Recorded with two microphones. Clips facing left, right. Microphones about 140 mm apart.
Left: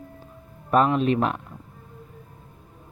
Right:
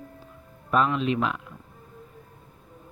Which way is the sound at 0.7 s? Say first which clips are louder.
Left 4 dB; 45° left (ahead or behind).